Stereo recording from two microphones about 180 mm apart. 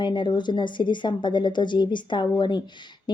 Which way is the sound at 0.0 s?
25° left (ahead or behind).